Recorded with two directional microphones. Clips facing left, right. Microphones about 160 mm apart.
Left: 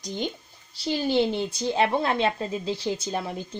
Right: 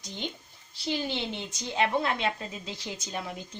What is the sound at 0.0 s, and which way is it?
A woman's voice, 40° left (ahead or behind).